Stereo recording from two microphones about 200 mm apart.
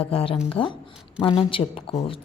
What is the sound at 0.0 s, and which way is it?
A woman's voice, 30° left (ahead or behind).